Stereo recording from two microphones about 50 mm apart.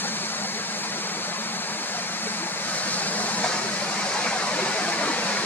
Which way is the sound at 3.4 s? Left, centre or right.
Left.